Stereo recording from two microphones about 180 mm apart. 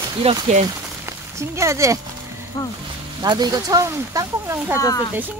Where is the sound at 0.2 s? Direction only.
35° right (ahead or behind).